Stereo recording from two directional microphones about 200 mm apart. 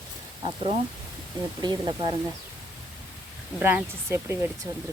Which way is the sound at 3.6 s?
10° right (ahead or behind).